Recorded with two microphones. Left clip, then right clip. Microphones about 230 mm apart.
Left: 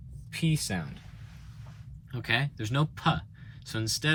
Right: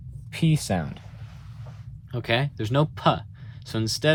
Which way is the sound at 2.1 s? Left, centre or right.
Centre.